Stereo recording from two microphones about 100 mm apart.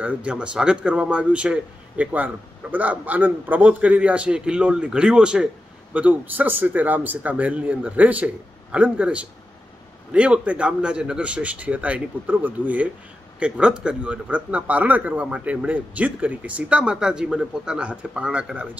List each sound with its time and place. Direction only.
0.0 s speech: 10° right (ahead or behind)